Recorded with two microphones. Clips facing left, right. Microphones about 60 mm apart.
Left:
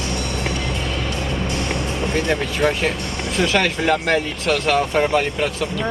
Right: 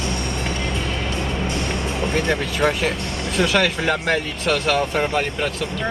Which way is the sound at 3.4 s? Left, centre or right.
Centre.